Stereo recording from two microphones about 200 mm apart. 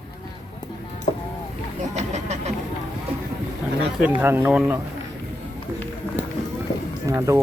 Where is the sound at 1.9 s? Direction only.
35° right (ahead or behind).